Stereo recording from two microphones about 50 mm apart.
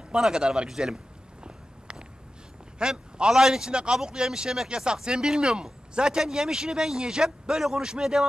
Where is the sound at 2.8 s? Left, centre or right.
Centre.